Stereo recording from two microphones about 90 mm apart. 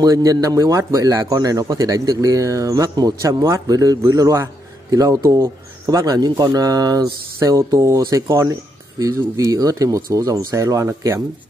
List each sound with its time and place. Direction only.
0.0 s a man's voice: 40° right (ahead or behind)